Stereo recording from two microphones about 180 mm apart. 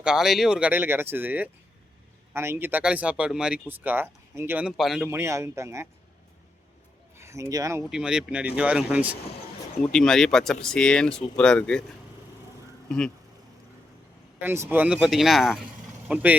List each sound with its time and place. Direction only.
0.0 s speech: 5° right (ahead or behind)
5.0 s speech: 15° right (ahead or behind)
7.2 s speech: 15° right (ahead or behind)
7.9 s speech: 5° right (ahead or behind)
9.8 s speech: 5° left (ahead or behind)
14.4 s speech: 15° right (ahead or behind)